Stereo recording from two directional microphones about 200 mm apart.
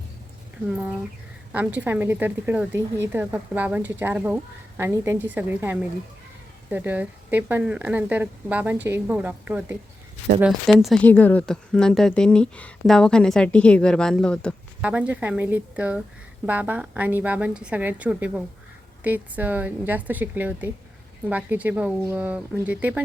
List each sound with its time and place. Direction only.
1.5 s a woman's voice: 10° right (ahead or behind)
14.8 s a woman's voice: 5° right (ahead or behind)